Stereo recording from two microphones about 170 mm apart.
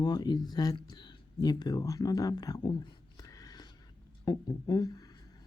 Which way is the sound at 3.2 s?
20° left (ahead or behind).